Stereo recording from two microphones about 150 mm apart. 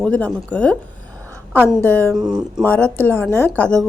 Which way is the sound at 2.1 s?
5° right (ahead or behind).